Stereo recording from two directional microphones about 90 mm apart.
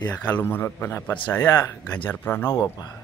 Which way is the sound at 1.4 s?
35° left (ahead or behind).